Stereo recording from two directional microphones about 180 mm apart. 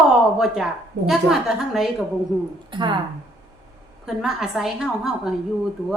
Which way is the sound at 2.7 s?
25° right (ahead or behind).